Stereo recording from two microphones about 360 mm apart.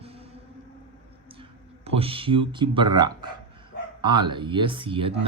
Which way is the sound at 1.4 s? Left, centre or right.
Centre.